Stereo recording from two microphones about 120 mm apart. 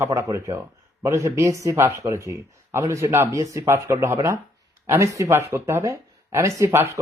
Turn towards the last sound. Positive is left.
turn(degrees=-25)  # may be behind; listen again after turning